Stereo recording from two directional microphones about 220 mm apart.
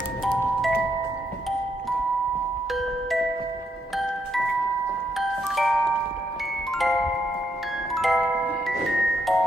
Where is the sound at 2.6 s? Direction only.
Centre (ahead or behind).